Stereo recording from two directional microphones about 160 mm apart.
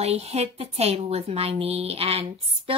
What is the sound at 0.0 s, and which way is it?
A woman's voice, 40° right (ahead or behind).